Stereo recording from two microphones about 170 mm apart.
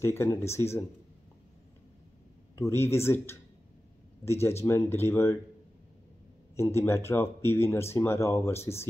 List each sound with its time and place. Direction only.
0.0 s speech: 15° left (ahead or behind)
2.5 s speech: 15° left (ahead or behind)
6.5 s speech: 15° left (ahead or behind)